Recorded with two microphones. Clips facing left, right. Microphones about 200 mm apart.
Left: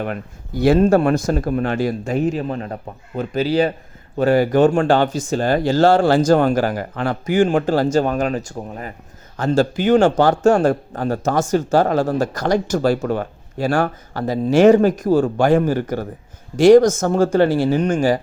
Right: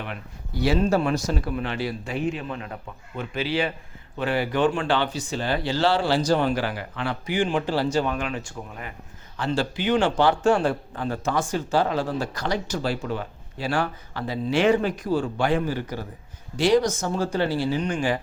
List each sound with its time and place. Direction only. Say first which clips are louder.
0.0 s a man's voice: left 9 dB; 45° left (ahead or behind)